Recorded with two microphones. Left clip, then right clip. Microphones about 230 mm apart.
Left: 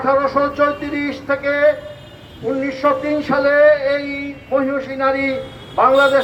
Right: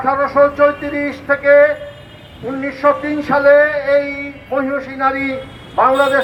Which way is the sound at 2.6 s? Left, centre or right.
Left.